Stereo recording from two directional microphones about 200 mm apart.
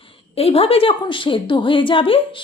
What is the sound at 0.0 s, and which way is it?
Speech, 30° left (ahead or behind).